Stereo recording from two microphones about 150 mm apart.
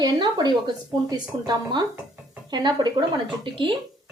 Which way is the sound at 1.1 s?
30° right (ahead or behind).